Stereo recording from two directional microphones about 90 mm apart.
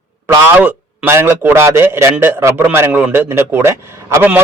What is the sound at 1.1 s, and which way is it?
A man's voice, 25° right (ahead or behind).